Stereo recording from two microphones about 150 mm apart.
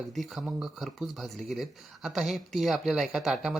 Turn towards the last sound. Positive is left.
turn(degrees=0)  # may be behind; listen again after turning